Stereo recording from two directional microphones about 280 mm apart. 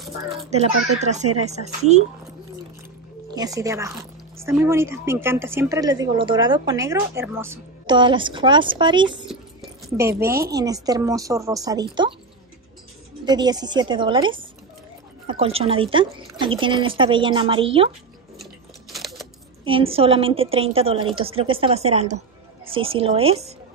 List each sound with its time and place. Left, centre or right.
0.9 s a woman's voice: right
3.3 s speech: centre
9.2 s zipper: centre
10.5 s speech: centre
13.2 s a woman's voice: centre
18.4 s a sound: centre
19.6 s a woman's voice: centre